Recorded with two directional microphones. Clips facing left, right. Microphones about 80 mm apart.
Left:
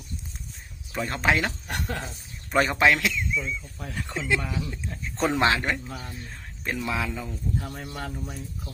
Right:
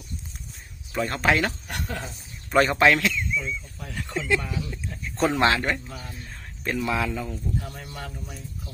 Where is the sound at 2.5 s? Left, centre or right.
Centre.